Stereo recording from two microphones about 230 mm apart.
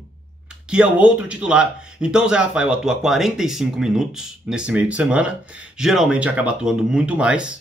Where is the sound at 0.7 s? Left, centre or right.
Centre.